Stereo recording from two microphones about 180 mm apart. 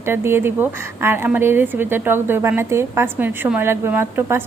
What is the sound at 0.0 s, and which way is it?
A woman's voice, 15° right (ahead or behind).